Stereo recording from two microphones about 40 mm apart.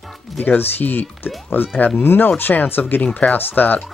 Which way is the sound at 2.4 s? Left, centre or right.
Left.